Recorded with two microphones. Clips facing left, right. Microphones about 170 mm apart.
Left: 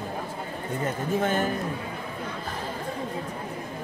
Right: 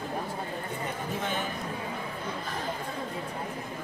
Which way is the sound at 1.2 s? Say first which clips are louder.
Left 8 dB; 50° left (ahead or behind).